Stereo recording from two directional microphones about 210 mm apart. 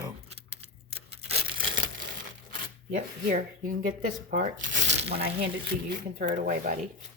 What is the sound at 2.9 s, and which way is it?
Speech, 40° right (ahead or behind).